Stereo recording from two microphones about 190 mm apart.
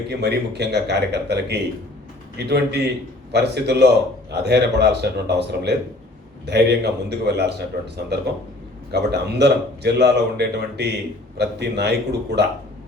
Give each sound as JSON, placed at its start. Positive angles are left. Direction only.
{"t": 0.1, "sound": "a man's voice", "side_deg": -60}